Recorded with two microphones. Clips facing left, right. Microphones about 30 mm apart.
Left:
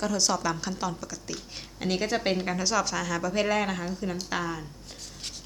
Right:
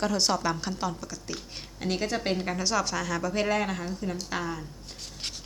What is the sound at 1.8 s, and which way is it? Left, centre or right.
Speech, centre.